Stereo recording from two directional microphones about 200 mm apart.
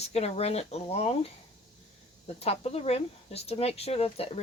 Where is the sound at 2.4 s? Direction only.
30° left (ahead or behind).